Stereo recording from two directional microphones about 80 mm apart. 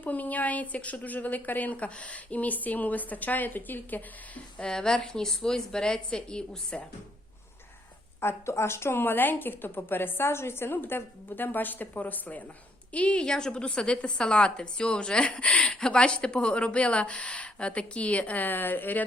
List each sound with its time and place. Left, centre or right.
0.0 s a woman's voice: centre
4.5 s a woman's voice: centre
8.2 s a woman's voice: left